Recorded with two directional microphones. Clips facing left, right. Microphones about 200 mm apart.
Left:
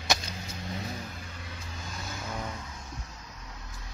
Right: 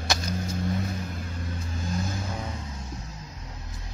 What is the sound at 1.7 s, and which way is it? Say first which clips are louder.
Vehicle: right 10 dB; 40° right (ahead or behind).